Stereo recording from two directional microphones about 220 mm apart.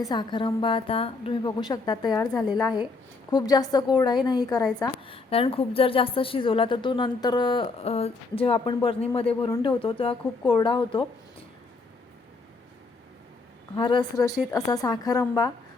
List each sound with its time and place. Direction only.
0.0 s a woman's voice: 20° left (ahead or behind)
3.2 s a woman's voice: 15° left (ahead or behind)
13.7 s a woman's voice: 20° left (ahead or behind)